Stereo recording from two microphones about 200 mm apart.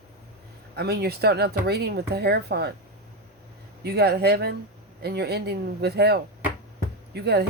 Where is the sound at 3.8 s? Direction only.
55° right (ahead or behind).